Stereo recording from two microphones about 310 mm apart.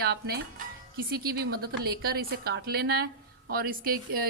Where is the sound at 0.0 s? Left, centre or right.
Right.